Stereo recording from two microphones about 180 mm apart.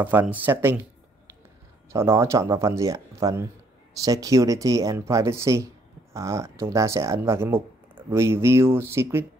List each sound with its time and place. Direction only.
0.0 s speech: 10° right (ahead or behind)
1.9 s speech: 15° right (ahead or behind)